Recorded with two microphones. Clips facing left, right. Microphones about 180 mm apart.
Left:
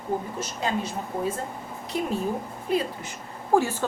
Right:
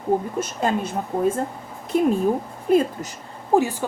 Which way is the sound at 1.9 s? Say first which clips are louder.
Right 10 dB; 50° right (ahead or behind).